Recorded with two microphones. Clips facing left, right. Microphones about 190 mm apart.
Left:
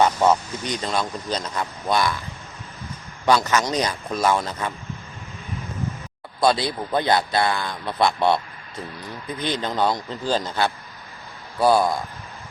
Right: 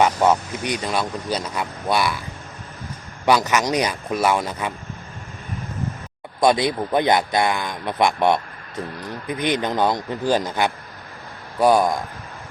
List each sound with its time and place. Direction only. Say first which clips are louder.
0.0 s speech: right 1 dB; 10° right (ahead or behind)
3.2 s speech: right 1 dB; 15° right (ahead or behind)
6.4 s speech: right 3 dB; 20° right (ahead or behind)
9.4 s speech: right 3 dB; 15° right (ahead or behind)